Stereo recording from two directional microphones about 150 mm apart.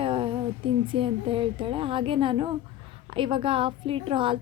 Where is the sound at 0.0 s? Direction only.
35° right (ahead or behind).